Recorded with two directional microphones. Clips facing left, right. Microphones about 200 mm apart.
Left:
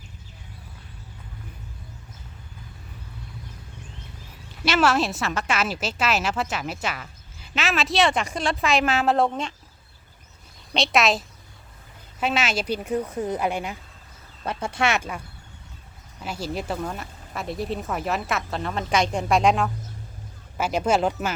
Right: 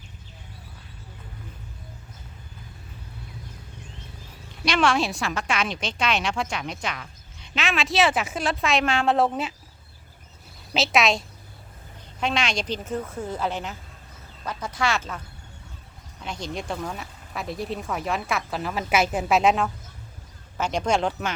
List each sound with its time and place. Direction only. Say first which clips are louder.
4.6 s a woman's voice: left 1 dB; 5° left (ahead or behind)
10.8 s a woman's voice: even; centre (ahead or behind)
12.2 s a woman's voice: left 1 dB; 5° left (ahead or behind)
14.4 s speech: left 2 dB; 25° left (ahead or behind)
16.2 s a woman's voice: left 2 dB; 5° left (ahead or behind)